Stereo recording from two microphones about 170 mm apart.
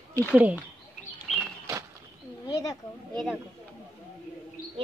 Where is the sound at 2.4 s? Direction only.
20° left (ahead or behind).